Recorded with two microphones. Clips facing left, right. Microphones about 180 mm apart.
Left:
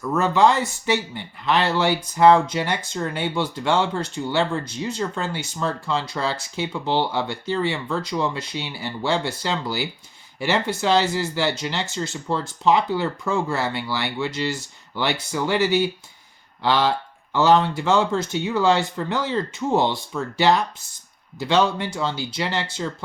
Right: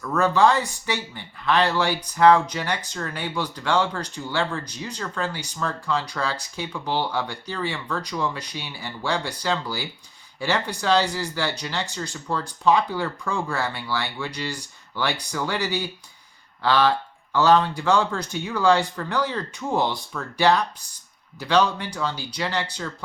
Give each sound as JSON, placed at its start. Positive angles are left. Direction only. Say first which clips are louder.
{"t": 0.0, "sound": "speech", "louder": "left 1 dB", "side_deg": 20}